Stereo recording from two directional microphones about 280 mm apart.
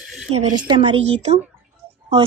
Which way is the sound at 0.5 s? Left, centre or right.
Centre.